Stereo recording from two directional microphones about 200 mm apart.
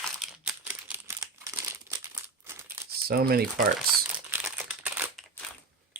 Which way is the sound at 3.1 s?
50° right (ahead or behind).